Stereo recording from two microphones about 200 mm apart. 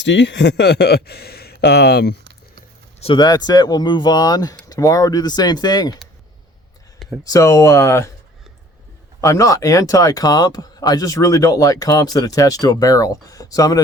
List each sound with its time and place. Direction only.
0.0 s a man's voice: 65° left (ahead or behind)
3.0 s speech: 25° left (ahead or behind)
7.3 s speech: 15° left (ahead or behind)
9.2 s speech: 15° left (ahead or behind)